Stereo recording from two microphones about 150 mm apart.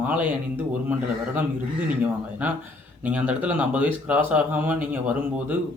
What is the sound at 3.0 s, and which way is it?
Speech, 10° right (ahead or behind).